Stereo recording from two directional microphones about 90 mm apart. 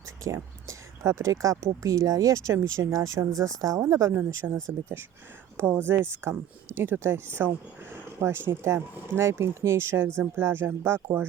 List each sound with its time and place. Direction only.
0.3 s speech: 35° right (ahead or behind)